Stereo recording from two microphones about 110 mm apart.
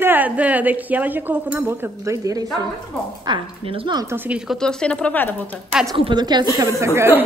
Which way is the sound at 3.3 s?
50° right (ahead or behind).